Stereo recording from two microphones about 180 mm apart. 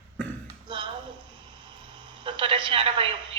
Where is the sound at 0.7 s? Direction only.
25° right (ahead or behind).